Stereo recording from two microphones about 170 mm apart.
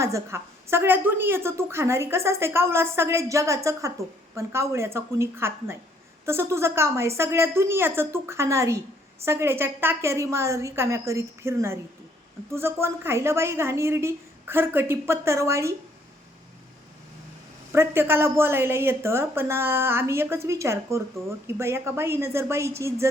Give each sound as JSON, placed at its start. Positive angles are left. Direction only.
{"t": 0.0, "sound": "a woman's voice", "side_deg": -15}
{"t": 17.7, "sound": "a woman's voice", "side_deg": -15}